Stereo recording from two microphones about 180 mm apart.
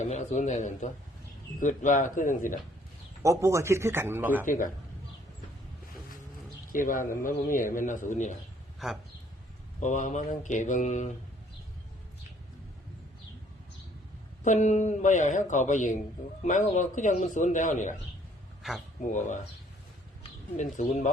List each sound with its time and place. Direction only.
0.0 s a man's voice: 40° left (ahead or behind)
3.2 s speech: 15° right (ahead or behind)
4.4 s speech: 45° left (ahead or behind)
6.7 s speech: 50° left (ahead or behind)
8.8 s speech: centre (ahead or behind)
9.8 s speech: 45° left (ahead or behind)
14.4 s speech: 40° left (ahead or behind)
18.6 s speech: centre (ahead or behind)
19.1 s speech: 45° left (ahead or behind)
20.6 s a man's voice: 40° left (ahead or behind)